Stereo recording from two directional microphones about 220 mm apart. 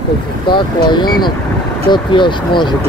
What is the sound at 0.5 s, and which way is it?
Speech, 20° left (ahead or behind).